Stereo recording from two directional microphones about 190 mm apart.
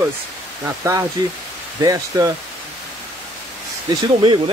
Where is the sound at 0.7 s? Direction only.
15° right (ahead or behind).